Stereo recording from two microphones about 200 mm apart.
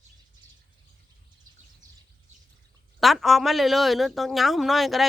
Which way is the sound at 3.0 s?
Centre (ahead or behind).